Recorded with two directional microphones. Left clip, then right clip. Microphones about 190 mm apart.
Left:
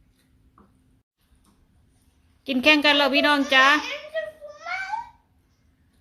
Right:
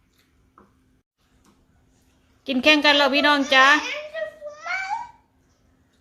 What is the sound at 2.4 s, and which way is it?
A woman's voice, centre (ahead or behind).